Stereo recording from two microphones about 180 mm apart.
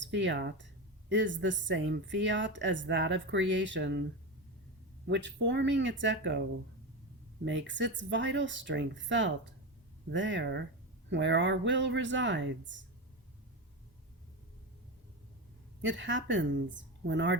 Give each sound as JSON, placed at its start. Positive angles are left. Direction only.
{"t": 0.0, "sound": "speech", "side_deg": -85}
{"t": 1.1, "sound": "speech", "side_deg": -90}
{"t": 5.0, "sound": "speech", "side_deg": -80}
{"t": 7.4, "sound": "speech", "side_deg": -85}
{"t": 15.8, "sound": "speech", "side_deg": -90}